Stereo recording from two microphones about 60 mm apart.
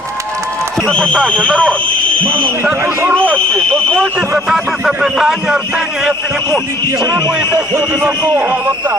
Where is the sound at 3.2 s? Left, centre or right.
Right.